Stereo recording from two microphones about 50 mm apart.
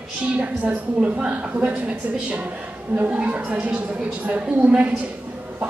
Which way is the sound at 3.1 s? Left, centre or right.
Right.